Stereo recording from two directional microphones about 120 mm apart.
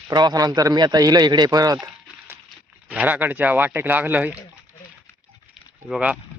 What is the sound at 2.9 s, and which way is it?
Speech, 10° right (ahead or behind).